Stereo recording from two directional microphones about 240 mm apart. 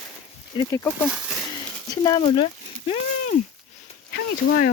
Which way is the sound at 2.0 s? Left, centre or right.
Centre.